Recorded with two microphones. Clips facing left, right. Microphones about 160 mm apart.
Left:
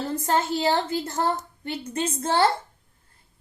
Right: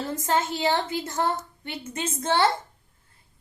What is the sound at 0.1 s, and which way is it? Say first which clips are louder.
A woman's voice: left 2 dB; 40° left (ahead or behind).